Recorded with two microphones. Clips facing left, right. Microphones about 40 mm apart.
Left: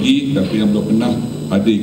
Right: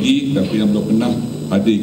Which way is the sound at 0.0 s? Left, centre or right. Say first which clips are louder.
Left 1 dB; left.